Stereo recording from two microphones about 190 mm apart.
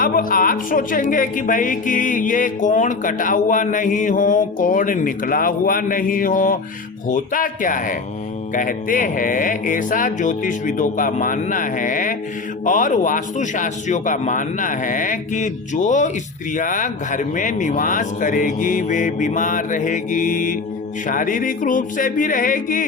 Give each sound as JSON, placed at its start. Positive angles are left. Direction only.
{"t": 0.0, "sound": "a woman's voice", "side_deg": 45}